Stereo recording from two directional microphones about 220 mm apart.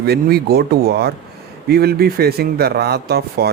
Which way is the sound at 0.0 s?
45° right (ahead or behind).